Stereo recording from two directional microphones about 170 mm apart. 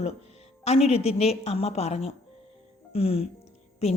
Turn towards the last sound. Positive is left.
turn(degrees=40)  # may be behind; listen again after turning